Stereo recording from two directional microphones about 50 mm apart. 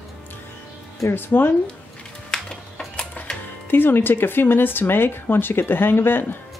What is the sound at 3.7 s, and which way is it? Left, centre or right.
Speech, left.